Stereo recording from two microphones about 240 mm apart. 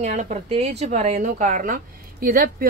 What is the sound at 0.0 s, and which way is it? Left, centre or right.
A woman's voice, right.